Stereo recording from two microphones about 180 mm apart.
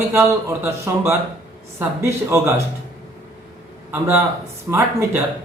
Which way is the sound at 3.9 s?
10° right (ahead or behind).